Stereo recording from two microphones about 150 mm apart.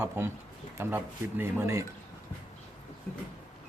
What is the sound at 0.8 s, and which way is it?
Speech, 15° right (ahead or behind).